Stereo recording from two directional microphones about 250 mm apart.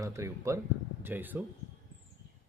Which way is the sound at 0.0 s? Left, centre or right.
Centre.